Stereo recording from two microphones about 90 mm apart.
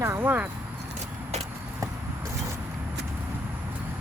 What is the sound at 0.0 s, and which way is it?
Clip-clop, 25° right (ahead or behind).